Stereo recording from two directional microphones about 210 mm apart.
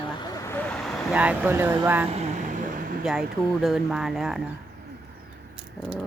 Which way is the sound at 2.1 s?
30° right (ahead or behind).